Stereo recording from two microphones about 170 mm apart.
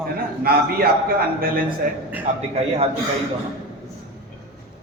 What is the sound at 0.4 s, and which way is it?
Speech, 65° right (ahead or behind).